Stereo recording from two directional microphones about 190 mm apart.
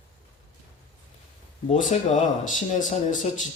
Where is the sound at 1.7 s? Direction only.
40° left (ahead or behind).